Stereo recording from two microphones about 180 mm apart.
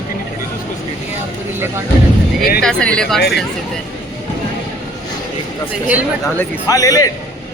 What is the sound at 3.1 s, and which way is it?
Speech, 60° left (ahead or behind).